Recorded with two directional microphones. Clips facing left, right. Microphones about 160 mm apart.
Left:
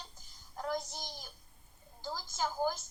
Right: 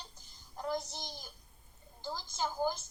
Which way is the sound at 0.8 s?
20° right (ahead or behind).